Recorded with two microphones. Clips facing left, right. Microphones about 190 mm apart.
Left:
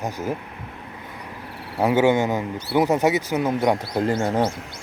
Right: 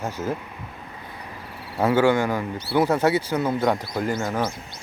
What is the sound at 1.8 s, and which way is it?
Speech, 20° left (ahead or behind).